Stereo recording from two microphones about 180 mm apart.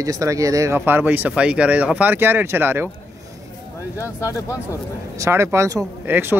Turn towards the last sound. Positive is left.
turn(degrees=-10)  # may be behind; listen again after turning